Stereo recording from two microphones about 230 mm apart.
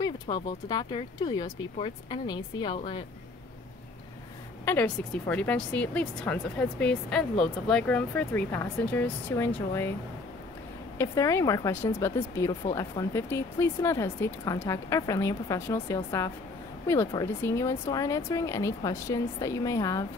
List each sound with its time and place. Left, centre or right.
0.0 s speech: centre
4.6 s speech: centre
11.0 s speech: centre